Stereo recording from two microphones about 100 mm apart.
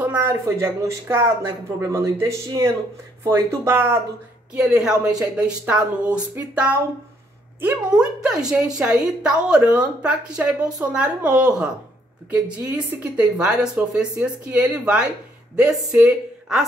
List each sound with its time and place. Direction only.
0.0 s speech: 20° right (ahead or behind)
4.6 s a woman's voice: 5° right (ahead or behind)